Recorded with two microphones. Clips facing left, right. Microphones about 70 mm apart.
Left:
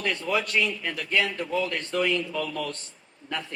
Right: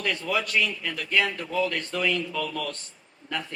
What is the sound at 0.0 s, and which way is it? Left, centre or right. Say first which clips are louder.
A man's voice: left 1 dB; left.